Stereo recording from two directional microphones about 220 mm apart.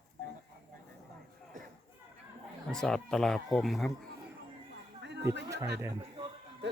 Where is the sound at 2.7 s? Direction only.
5° left (ahead or behind).